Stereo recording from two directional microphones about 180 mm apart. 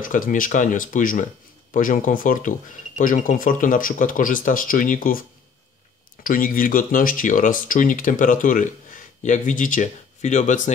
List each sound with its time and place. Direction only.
0.0 s speech: 45° left (ahead or behind)
6.2 s speech: 50° left (ahead or behind)